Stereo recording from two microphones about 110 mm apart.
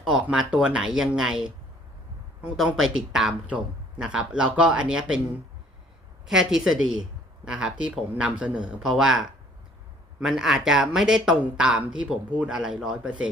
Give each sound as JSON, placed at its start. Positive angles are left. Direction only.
{"t": 0.1, "sound": "a man's voice", "side_deg": -5}
{"t": 6.2, "sound": "a man's voice", "side_deg": -5}